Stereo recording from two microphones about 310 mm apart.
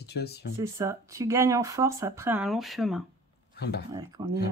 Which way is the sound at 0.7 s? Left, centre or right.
Centre.